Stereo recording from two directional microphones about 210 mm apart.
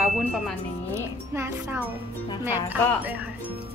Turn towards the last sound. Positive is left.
turn(degrees=-10)  # may be behind; listen again after turning